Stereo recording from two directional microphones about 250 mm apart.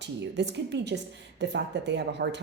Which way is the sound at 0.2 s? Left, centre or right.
Right.